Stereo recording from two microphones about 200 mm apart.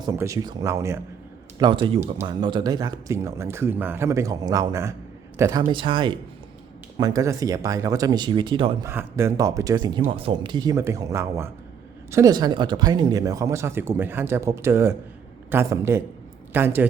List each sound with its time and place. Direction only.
0.0 s speech: 15° right (ahead or behind)
8.9 s speech: 10° right (ahead or behind)